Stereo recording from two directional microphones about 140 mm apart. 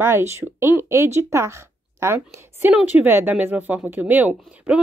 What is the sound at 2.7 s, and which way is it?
A woman's voice, 5° right (ahead or behind).